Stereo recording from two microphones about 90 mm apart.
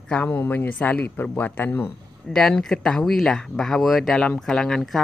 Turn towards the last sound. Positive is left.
turn(degrees=5)  # may be behind; listen again after turning